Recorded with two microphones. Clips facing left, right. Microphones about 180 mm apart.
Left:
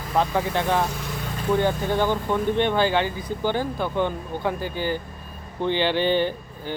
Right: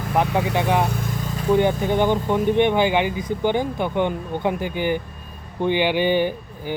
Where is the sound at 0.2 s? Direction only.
15° right (ahead or behind).